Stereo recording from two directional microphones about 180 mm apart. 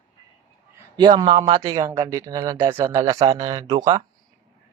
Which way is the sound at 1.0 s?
25° right (ahead or behind).